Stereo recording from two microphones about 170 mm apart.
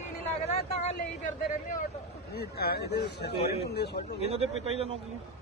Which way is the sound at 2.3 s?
70° left (ahead or behind).